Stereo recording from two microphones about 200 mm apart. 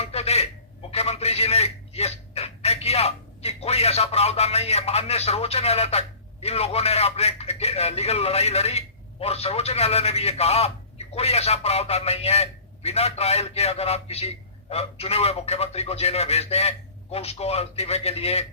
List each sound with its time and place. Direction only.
0.0 s telephone: 30° left (ahead or behind)
9.2 s a man's voice: 30° left (ahead or behind)